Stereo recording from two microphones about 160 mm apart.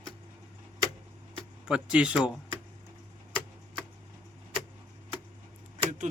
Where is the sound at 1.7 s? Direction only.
5° right (ahead or behind).